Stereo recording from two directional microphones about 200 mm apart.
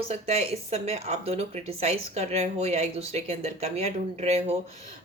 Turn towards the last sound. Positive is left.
turn(degrees=-30)  # may be behind; listen again after turning